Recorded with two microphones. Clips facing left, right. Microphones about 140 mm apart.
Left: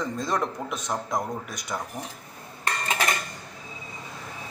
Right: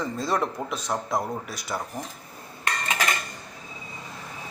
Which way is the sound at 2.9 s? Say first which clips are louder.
Left 1 dB; 20° left (ahead or behind).